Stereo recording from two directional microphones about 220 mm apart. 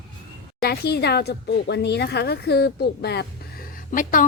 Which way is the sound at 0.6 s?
45° left (ahead or behind).